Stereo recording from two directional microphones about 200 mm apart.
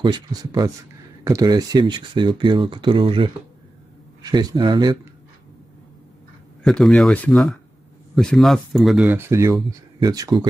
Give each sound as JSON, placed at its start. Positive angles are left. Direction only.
{"t": 0.0, "sound": "speech", "side_deg": -20}
{"t": 6.6, "sound": "speech", "side_deg": 0}